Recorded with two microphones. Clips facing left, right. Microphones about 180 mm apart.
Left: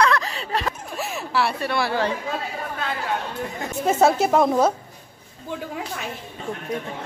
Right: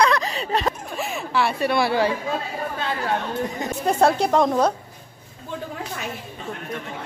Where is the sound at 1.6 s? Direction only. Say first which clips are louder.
Right 3 dB; 15° right (ahead or behind).